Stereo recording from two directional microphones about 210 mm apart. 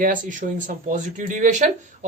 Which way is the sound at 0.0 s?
40° right (ahead or behind).